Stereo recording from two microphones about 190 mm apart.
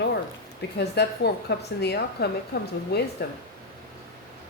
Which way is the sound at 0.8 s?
60° left (ahead or behind).